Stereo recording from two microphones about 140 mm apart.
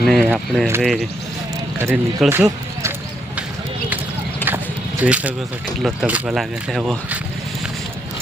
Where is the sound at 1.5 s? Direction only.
20° right (ahead or behind).